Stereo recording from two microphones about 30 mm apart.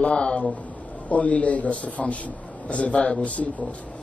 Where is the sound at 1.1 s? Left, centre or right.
Left.